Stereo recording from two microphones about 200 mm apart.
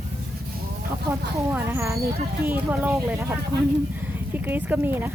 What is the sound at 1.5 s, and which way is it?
Dog, 10° right (ahead or behind).